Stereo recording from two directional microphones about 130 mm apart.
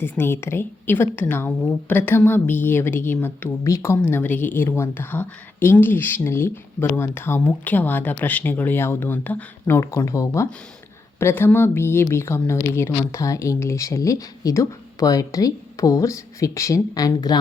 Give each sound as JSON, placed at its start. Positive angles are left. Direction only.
{"t": 0.0, "sound": "a woman's voice", "side_deg": 20}